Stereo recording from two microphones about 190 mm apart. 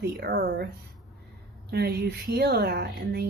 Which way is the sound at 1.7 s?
55° right (ahead or behind).